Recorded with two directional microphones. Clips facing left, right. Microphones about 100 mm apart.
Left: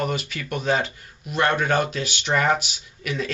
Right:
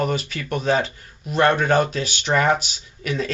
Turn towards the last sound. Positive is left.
turn(degrees=-35)  # may be behind; listen again after turning